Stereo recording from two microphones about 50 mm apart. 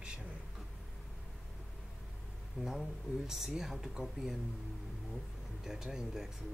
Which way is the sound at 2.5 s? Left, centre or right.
Centre.